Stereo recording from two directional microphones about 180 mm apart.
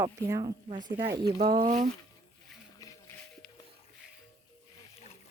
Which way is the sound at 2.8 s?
15° left (ahead or behind).